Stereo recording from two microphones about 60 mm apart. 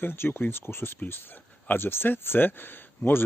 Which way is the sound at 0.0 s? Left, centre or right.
Left.